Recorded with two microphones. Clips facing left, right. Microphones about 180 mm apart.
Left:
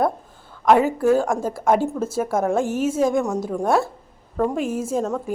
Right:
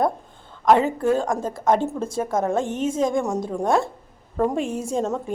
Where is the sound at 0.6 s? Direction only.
5° left (ahead or behind).